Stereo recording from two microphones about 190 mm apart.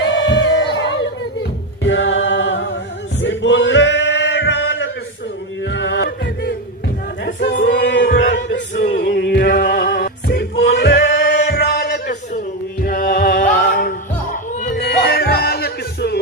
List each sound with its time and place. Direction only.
0.0 s a sound: 70° left (ahead or behind)
1.8 s a capella: 75° left (ahead or behind)
3.2 s male singing: 70° left (ahead or behind)
5.6 s music: 70° left (ahead or behind)
7.4 s male singing: 70° left (ahead or behind)
12.8 s music: 50° left (ahead or behind)